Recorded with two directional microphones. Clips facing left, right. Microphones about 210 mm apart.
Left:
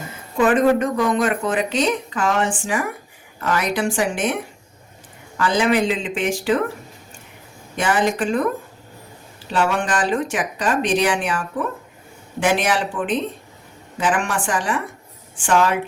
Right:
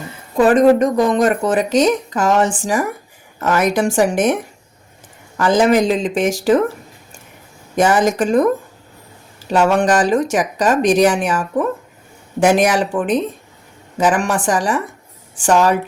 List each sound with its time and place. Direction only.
0.3 s speech: 35° right (ahead or behind)
5.4 s speech: 45° right (ahead or behind)
7.8 s speech: 40° right (ahead or behind)
9.5 s speech: 45° right (ahead or behind)